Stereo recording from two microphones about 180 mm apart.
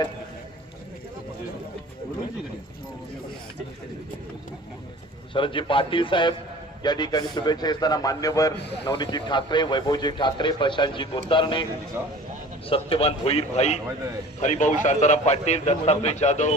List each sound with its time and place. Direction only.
5.3 s a man's voice: 30° left (ahead or behind)
12.0 s speech: 10° right (ahead or behind)
12.6 s a man's voice: 30° left (ahead or behind)